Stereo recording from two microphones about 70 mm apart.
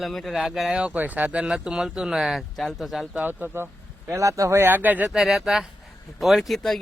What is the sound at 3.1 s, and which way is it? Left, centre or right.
Speech, centre.